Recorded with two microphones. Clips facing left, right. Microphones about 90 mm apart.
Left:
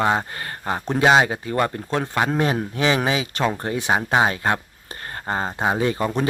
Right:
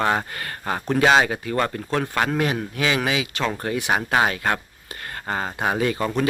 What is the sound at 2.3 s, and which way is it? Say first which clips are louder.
Speech: left 2 dB; 30° left (ahead or behind).